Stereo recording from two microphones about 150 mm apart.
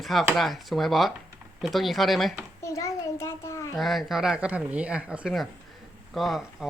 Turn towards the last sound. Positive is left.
turn(degrees=0)  # may be behind; listen again after turning